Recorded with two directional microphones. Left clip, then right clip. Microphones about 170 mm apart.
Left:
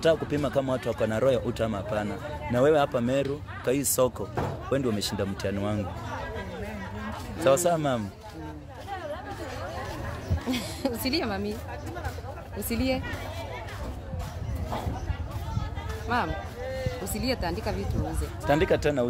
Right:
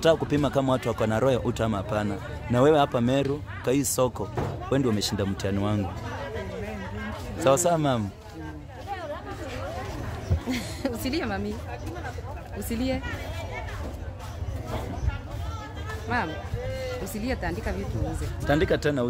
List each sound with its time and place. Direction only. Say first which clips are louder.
0.0 s a man's voice: right 2 dB; 25° right (ahead or behind)
7.4 s a man's voice: right 1 dB; 15° right (ahead or behind)
10.5 s a woman's voice: left 1 dB; 10° left (ahead or behind)
12.6 s a woman's voice: left 1 dB; 15° left (ahead or behind)
16.1 s a woman's voice: left 1 dB; 5° left (ahead or behind)
18.5 s speech: even; 5° right (ahead or behind)